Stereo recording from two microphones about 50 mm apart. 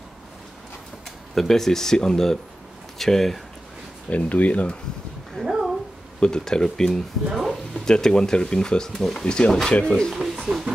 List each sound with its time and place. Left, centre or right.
1.3 s speech: centre
4.1 s speech: left
5.4 s a sound: centre
6.1 s speech: centre
8.9 s speech: centre
9.2 s speech: centre
10.1 s speech: centre